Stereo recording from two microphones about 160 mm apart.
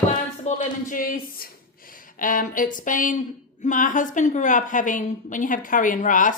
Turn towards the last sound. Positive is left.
turn(degrees=55)  # may be behind; listen again after turning